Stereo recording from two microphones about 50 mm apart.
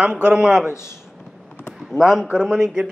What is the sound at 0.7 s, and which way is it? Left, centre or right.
Speech, left.